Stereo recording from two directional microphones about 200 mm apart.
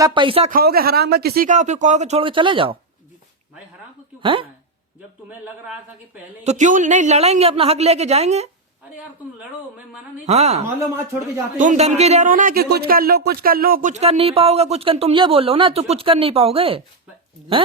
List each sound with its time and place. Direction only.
0.0 s speech: 25° right (ahead or behind)
0.5 s speech: 50° right (ahead or behind); by 2.7 s 25° right (ahead or behind)
4.2 s speech: 25° right (ahead or behind)
6.4 s speech: 35° right (ahead or behind)
10.2 s speech: 35° right (ahead or behind)